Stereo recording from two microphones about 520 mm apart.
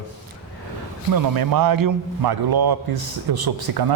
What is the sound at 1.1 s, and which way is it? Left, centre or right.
A man's voice, right.